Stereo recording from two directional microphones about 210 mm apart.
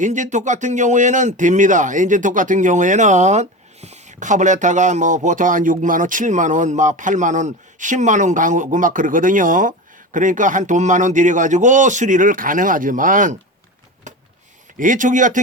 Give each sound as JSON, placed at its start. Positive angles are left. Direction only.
{"t": 0.0, "sound": "speech", "side_deg": -35}
{"t": 14.1, "sound": "a sound", "side_deg": -35}
{"t": 14.8, "sound": "speech", "side_deg": -40}